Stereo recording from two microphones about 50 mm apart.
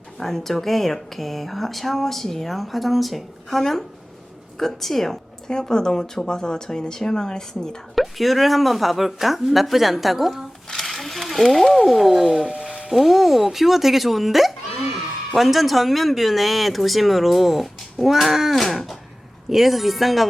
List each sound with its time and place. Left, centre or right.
0.2 s speech: centre
7.9 s speech: centre
10.7 s speech: centre
12.2 s speech: centre
12.6 s music: centre
12.9 s speech: centre